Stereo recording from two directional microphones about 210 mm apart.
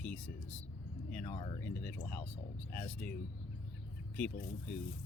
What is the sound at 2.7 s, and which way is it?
Speech, 10° left (ahead or behind).